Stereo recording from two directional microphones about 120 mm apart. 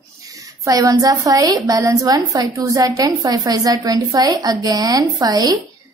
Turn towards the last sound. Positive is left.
turn(degrees=-30)  # may be behind; listen again after turning